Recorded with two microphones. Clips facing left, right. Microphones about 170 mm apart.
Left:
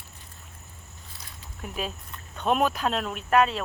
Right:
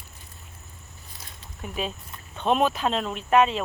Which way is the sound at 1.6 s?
Centre (ahead or behind).